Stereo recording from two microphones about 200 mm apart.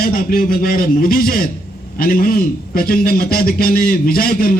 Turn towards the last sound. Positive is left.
turn(degrees=45)  # may be behind; listen again after turning